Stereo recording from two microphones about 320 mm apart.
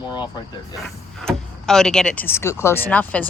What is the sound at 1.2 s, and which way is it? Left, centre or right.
Speech, centre.